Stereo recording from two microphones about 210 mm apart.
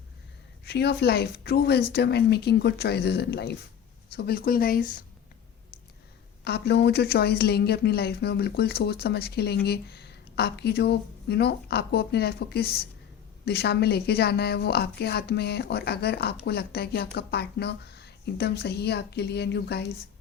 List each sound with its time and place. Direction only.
0.6 s a woman's voice: 50° left (ahead or behind)
6.4 s a woman's voice: 50° left (ahead or behind)